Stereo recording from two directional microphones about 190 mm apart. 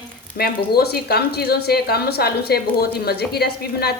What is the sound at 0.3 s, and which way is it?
A woman's voice, 55° left (ahead or behind).